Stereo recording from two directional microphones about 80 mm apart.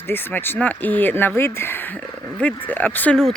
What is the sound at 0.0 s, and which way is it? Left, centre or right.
Speech, left.